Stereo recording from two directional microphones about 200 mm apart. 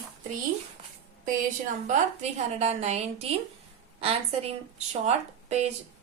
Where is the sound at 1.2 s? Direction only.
40° right (ahead or behind).